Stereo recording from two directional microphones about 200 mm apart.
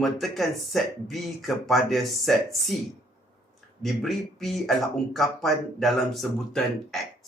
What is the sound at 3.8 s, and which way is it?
Speech, centre (ahead or behind).